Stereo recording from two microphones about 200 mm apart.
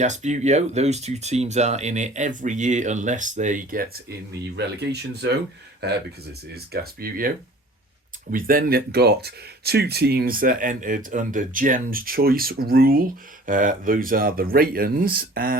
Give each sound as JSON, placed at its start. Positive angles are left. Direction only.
{"t": 0.0, "sound": "speech", "side_deg": -35}
{"t": 4.5, "sound": "speech", "side_deg": -55}
{"t": 7.0, "sound": "speech", "side_deg": -45}